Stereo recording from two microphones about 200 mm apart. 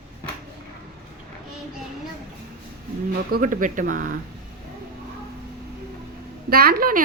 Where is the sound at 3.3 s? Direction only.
45° right (ahead or behind).